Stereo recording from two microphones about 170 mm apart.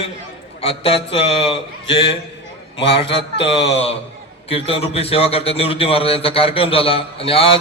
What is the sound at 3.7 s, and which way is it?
A man's voice, 35° left (ahead or behind).